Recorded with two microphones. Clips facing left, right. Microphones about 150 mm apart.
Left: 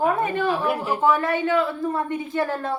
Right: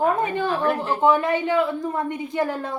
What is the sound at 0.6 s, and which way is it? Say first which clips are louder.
Speech: right 1 dB; 10° left (ahead or behind).